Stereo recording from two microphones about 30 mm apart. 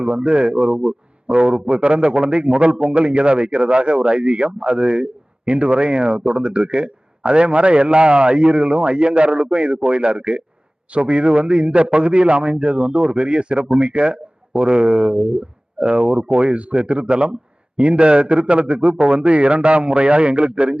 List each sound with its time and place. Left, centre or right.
0.0 s a man's voice: right